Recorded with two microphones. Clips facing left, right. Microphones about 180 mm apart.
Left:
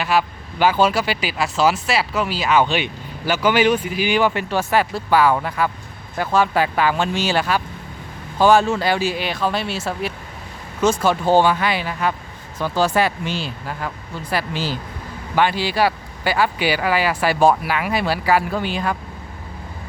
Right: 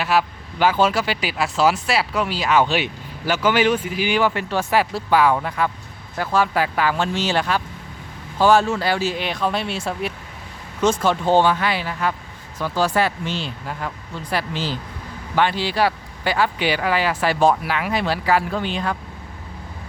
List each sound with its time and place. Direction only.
0.0 s speech: centre (ahead or behind)
3.3 s speech: 10° left (ahead or behind)
4.7 s speech: centre (ahead or behind)
6.1 s speech: 20° left (ahead or behind)